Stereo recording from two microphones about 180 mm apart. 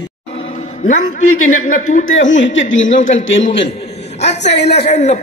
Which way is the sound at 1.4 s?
45° left (ahead or behind).